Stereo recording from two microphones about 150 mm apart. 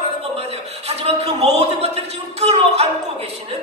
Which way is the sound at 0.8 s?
45° right (ahead or behind).